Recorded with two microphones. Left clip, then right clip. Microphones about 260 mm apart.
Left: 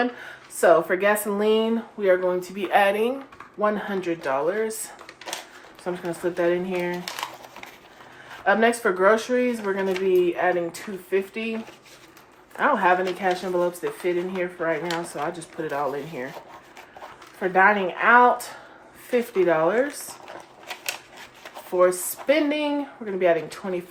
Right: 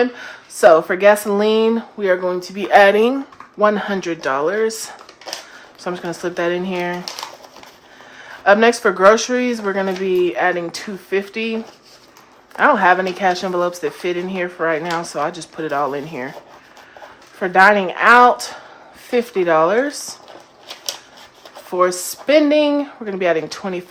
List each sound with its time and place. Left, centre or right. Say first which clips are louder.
0.6 s speech: right 7 dB; right
5.8 s speech: right 4 dB; right
8.4 s speech: right 7 dB; right
12.5 s speech: right 7 dB; right
17.4 s speech: right 7 dB; right
19.5 s speech: right 8 dB; right
21.8 s speech: right 3 dB; right